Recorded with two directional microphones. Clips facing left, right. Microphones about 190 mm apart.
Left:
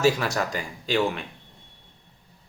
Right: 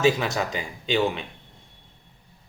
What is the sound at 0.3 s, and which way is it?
Speech, 20° right (ahead or behind).